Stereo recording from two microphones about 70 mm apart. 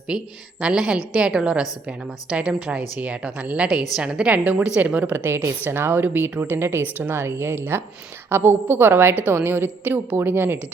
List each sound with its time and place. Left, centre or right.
0.1 s a woman's voice: centre
5.1 s a woman's voice: right